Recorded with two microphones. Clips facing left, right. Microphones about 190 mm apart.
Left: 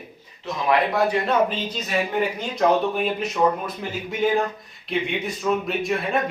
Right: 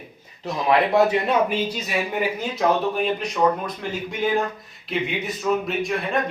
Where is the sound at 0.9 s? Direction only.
20° right (ahead or behind).